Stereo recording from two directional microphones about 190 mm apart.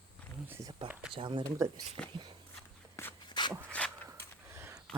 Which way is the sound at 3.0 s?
15° left (ahead or behind).